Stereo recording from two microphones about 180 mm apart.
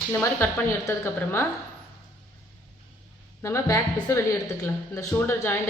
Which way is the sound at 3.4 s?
15° left (ahead or behind).